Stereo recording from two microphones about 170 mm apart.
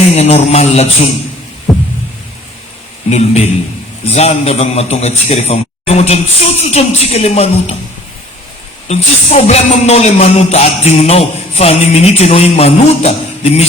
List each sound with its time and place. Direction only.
0.1 s speech: 40° left (ahead or behind)
3.1 s speech: 40° left (ahead or behind)
8.9 s speech: 40° left (ahead or behind)